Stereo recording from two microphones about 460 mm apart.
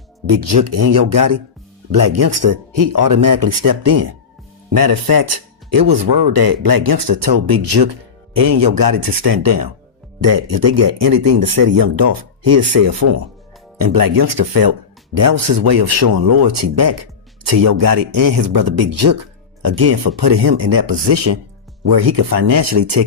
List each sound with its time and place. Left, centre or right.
0.3 s speech: right
8.4 s speech: right
13.7 s speech: right
16.0 s speech: right